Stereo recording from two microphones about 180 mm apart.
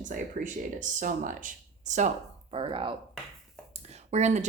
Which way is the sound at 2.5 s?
30° right (ahead or behind).